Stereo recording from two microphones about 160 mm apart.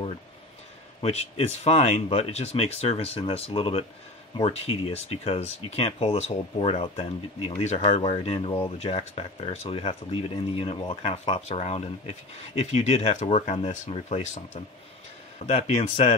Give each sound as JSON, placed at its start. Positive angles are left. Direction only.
{"t": 1.0, "sound": "speech", "side_deg": 40}